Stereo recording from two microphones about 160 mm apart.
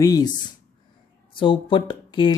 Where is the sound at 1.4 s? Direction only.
30° left (ahead or behind).